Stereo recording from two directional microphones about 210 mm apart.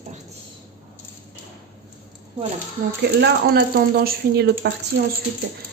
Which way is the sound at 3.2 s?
55° right (ahead or behind).